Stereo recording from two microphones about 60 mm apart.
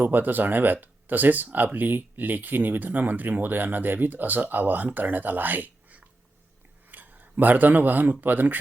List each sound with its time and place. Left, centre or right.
0.0 s speech: right
6.8 s a sound: right
8.2 s speech: right